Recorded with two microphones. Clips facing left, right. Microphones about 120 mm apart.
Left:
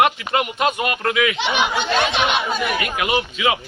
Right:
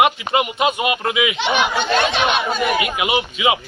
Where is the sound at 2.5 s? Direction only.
10° right (ahead or behind).